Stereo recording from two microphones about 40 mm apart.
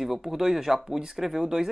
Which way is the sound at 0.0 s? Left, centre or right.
Centre.